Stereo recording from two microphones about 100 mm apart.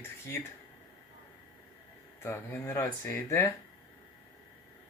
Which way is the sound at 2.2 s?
30° left (ahead or behind).